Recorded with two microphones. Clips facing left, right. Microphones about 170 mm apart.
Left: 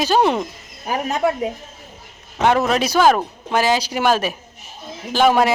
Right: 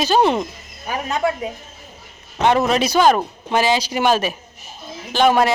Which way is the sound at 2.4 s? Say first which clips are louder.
Even; centre (ahead or behind).